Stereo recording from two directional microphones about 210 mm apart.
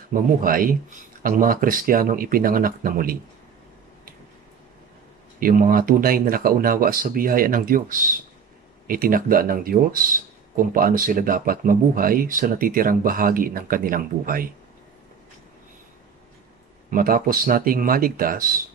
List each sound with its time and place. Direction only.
0.1 s speech: 40° right (ahead or behind)
5.4 s speech: 40° right (ahead or behind)
16.9 s speech: 40° right (ahead or behind)